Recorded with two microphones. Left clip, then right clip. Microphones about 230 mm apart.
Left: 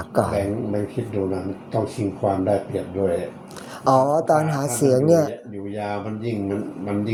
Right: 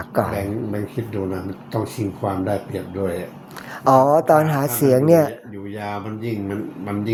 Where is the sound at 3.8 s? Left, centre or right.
Centre.